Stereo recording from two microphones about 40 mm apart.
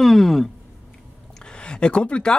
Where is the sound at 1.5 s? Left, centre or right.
Left.